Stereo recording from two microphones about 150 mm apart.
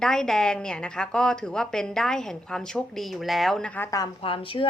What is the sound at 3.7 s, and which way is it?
Speech, 20° left (ahead or behind).